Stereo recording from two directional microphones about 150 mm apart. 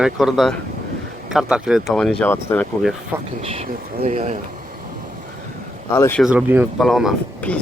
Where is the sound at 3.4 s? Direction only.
40° right (ahead or behind).